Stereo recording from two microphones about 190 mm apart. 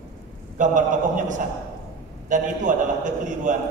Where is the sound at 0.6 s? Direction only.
40° right (ahead or behind).